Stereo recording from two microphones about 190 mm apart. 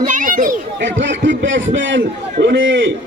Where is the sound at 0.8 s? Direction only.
70° right (ahead or behind).